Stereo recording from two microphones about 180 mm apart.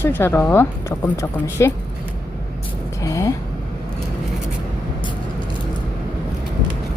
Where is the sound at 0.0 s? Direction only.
10° left (ahead or behind).